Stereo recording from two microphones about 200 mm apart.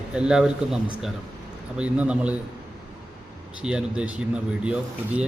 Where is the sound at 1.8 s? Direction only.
5° right (ahead or behind).